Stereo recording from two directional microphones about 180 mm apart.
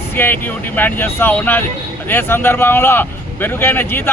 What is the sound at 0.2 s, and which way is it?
Speech, 10° left (ahead or behind).